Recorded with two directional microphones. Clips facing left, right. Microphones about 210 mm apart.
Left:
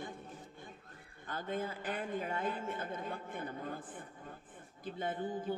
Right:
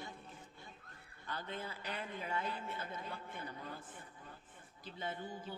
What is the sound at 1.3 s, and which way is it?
Speech, 45° left (ahead or behind).